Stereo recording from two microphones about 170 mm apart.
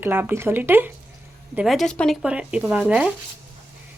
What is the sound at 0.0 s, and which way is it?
Speech, 10° right (ahead or behind).